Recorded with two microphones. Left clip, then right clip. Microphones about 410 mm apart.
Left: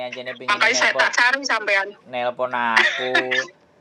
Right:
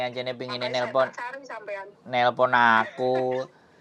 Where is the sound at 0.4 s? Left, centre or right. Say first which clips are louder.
Left 13 dB; left.